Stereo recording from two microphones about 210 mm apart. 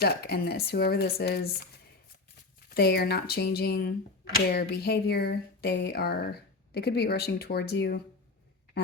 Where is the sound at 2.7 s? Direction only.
50° left (ahead or behind).